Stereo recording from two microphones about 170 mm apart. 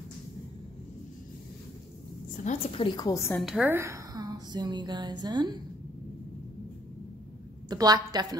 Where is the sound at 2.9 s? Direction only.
20° left (ahead or behind).